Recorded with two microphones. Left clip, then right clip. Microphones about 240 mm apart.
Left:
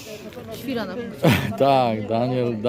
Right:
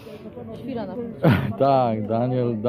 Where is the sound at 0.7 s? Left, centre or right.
Left.